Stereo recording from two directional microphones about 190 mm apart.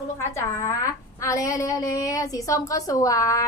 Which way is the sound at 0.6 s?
15° left (ahead or behind).